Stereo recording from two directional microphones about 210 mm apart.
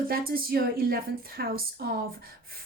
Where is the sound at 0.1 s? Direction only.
45° right (ahead or behind).